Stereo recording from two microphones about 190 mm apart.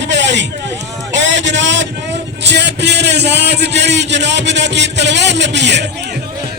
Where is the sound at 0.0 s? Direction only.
65° right (ahead or behind).